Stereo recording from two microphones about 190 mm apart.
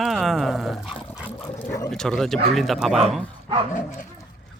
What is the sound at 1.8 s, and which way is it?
Speech, centre (ahead or behind).